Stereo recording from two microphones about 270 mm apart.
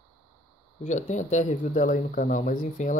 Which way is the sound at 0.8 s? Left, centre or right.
Left.